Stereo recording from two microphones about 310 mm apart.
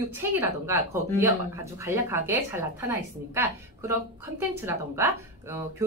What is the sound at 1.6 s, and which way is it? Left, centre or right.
A woman's voice, centre.